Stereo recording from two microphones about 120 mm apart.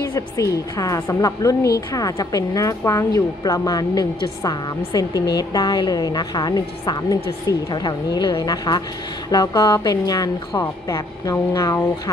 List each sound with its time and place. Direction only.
0.1 s a woman's voice: 25° left (ahead or behind)
11.3 s a woman's voice: 25° left (ahead or behind)